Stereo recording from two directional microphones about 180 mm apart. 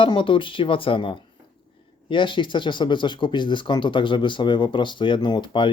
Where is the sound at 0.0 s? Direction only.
30° left (ahead or behind).